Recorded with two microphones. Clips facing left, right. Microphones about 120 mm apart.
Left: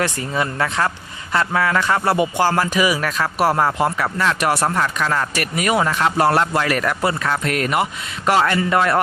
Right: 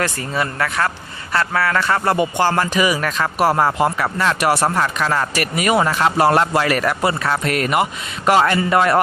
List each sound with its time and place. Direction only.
0.0 s a man's voice: 20° left (ahead or behind); by 9.0 s 10° right (ahead or behind)